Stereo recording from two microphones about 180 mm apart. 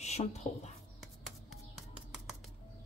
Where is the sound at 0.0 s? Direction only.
35° left (ahead or behind).